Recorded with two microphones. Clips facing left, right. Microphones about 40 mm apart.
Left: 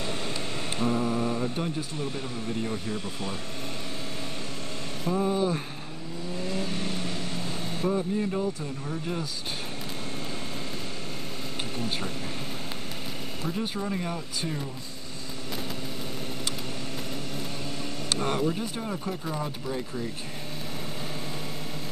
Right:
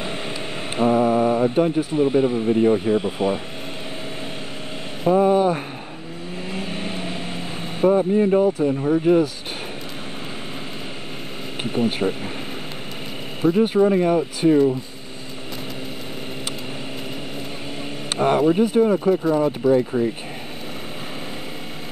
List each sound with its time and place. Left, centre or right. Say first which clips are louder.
0.7 s speech: right 10 dB; right
5.0 s speech: right 10 dB; right
6.4 s vehicle: right 3 dB; right
7.8 s speech: right 11 dB; right
11.6 s speech: right 13 dB; right
13.4 s speech: right 16 dB; right
18.1 s speech: right 10 dB; right